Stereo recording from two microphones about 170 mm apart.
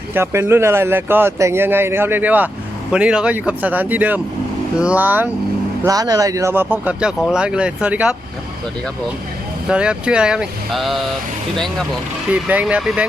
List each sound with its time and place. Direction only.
0.1 s speech: 15° right (ahead or behind)
5.8 s speech: 20° right (ahead or behind)
9.6 s speech: 5° right (ahead or behind)
12.3 s speech: 10° right (ahead or behind)